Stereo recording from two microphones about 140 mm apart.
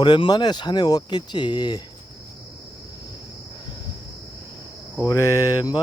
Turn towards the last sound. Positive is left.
turn(degrees=25)  # may be behind; listen again after turning